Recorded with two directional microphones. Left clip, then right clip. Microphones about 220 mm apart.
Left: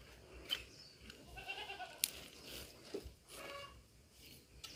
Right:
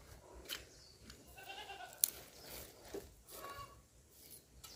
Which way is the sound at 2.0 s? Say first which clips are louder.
Right 1 dB; 35° right (ahead or behind).